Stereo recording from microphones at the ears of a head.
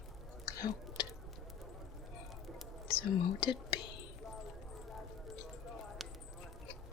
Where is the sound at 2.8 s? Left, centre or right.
Left.